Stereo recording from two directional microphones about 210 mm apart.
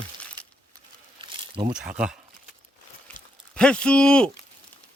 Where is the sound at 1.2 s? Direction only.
25° right (ahead or behind).